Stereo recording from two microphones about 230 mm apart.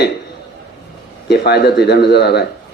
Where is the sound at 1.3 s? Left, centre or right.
Left.